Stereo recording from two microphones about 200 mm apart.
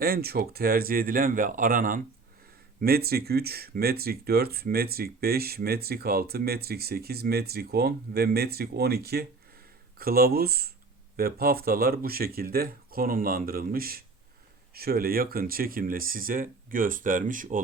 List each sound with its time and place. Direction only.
0.0 s speech: 50° right (ahead or behind)